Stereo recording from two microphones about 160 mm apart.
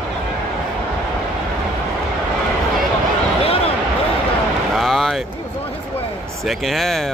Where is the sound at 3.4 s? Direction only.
35° left (ahead or behind).